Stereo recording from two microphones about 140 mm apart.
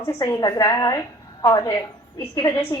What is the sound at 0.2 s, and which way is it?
A woman's voice, 25° left (ahead or behind).